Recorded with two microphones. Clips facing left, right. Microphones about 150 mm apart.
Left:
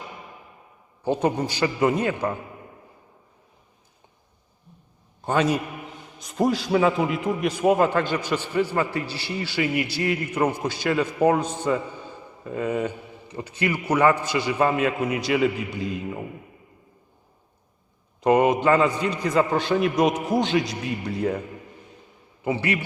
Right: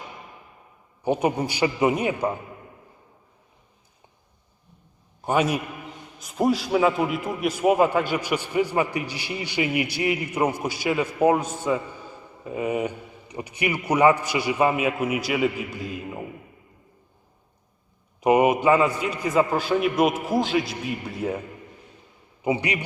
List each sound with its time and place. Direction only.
1.0 s a man's voice: 15° right (ahead or behind)
5.2 s a man's voice: 10° right (ahead or behind)
18.2 s a man's voice: 10° right (ahead or behind)
22.4 s a man's voice: 15° right (ahead or behind)